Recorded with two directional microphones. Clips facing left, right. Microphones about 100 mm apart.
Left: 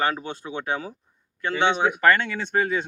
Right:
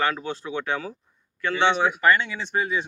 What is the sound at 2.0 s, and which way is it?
Speech, 50° left (ahead or behind).